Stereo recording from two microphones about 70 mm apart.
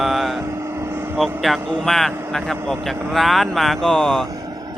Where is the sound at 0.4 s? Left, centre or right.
Right.